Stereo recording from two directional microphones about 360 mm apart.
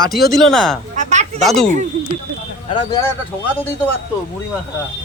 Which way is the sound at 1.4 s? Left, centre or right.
Centre.